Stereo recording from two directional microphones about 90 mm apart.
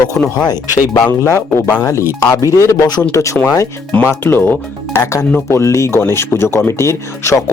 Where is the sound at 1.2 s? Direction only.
30° left (ahead or behind).